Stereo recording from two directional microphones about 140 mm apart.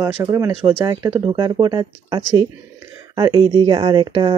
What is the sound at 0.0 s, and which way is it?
Speech, 20° right (ahead or behind).